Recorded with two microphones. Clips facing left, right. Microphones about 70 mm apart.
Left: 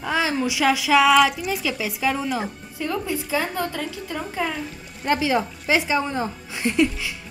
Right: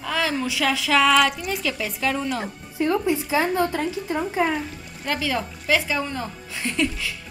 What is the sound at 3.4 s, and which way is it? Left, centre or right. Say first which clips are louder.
A woman's voice: right 4 dB; centre.